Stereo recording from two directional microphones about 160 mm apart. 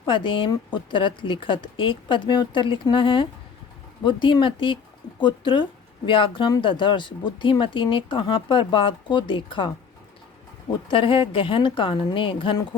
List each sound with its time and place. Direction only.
0.0 s speech: 30° left (ahead or behind)